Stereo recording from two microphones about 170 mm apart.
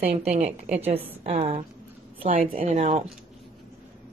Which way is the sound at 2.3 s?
55° right (ahead or behind).